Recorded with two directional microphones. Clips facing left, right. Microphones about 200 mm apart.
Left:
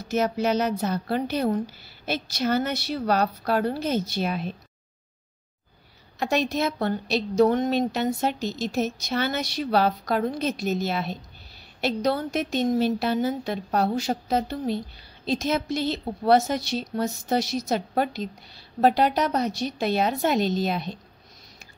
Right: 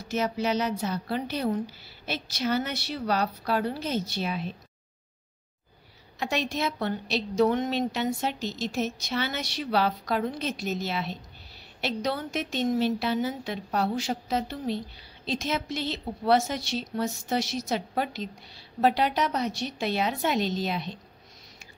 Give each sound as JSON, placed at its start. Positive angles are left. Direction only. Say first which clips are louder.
{"t": 0.1, "sound": "a woman's voice", "louder": "left 4 dB", "side_deg": 45}
{"t": 6.1, "sound": "a woman's voice", "louder": "left 5 dB", "side_deg": 45}